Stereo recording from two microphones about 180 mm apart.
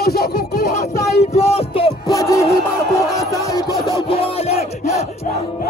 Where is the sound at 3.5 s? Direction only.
20° left (ahead or behind).